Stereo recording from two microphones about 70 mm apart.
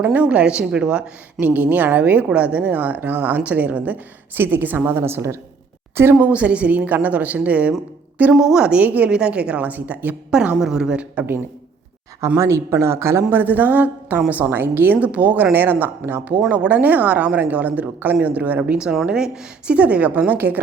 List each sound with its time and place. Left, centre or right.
0.0 s a woman's voice: right
1.4 s a woman's voice: right
6.1 s a woman's voice: centre
10.3 s a woman's voice: centre
12.4 s speech: right
13.3 s a woman's voice: right
16.5 s a woman's voice: centre
19.0 s a woman's voice: centre